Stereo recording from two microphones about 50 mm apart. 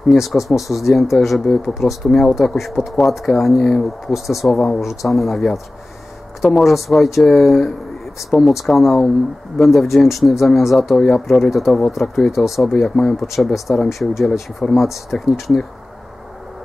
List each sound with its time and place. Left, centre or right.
0.1 s speech: centre
6.6 s speech: centre
13.3 s speech: centre